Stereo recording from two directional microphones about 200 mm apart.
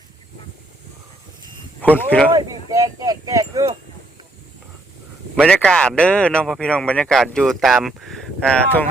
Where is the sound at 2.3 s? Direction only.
15° right (ahead or behind).